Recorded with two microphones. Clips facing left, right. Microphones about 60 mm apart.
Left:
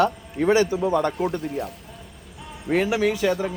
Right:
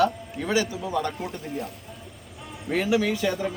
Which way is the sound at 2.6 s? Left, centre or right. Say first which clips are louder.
Left 2 dB; centre.